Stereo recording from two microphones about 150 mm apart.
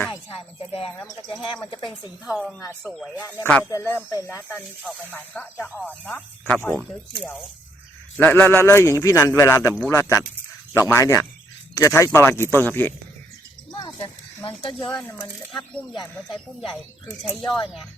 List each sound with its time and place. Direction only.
0.1 s speech: 35° left (ahead or behind)
0.9 s speech: 25° left (ahead or behind)
1.3 s speech: centre (ahead or behind)
1.7 s speech: 30° left (ahead or behind)
2.2 s speech: 5° right (ahead or behind)
3.7 s speech: 15° left (ahead or behind)
8.2 s speech: 15° left (ahead or behind)
13.7 s speech: 35° left (ahead or behind)
14.8 s speech: 10° left (ahead or behind)